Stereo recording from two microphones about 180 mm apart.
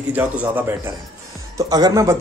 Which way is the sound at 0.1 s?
10° right (ahead or behind).